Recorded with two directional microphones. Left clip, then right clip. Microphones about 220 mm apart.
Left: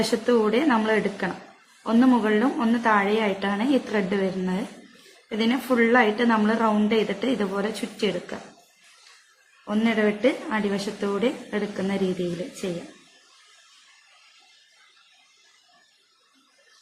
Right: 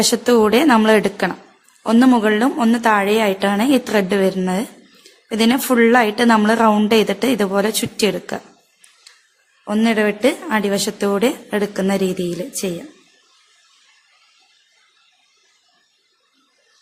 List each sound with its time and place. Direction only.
0.1 s a woman's voice: 55° right (ahead or behind)
9.6 s a woman's voice: 55° right (ahead or behind)